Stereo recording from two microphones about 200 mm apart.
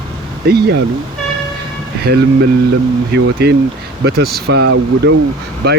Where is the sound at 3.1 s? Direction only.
55° right (ahead or behind).